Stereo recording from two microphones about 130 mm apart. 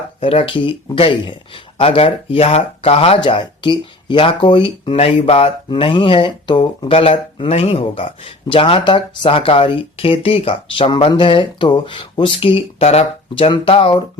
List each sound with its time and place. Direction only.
0.2 s speech: 45° left (ahead or behind)
5.6 s speech: 40° left (ahead or behind)